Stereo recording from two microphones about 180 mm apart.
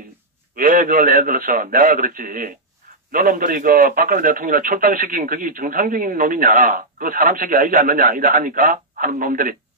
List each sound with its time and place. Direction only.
0.6 s a man's voice: 50° right (ahead or behind)